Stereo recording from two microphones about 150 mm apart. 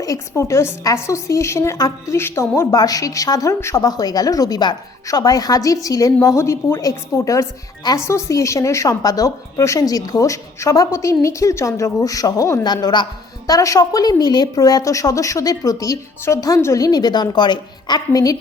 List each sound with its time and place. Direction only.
0.0 s a woman's voice: 20° left (ahead or behind)